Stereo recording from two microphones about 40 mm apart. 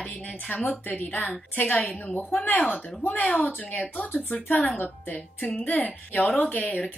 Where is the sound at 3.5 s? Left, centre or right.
Left.